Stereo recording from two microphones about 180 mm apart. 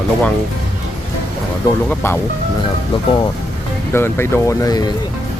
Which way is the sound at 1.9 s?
10° left (ahead or behind).